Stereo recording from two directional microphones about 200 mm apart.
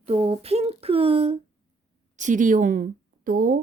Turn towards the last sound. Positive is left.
turn(degrees=-40)  # may be behind; listen again after turning